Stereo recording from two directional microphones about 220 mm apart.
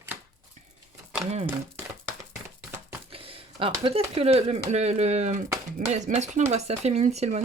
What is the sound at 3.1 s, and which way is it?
Speech, 25° right (ahead or behind).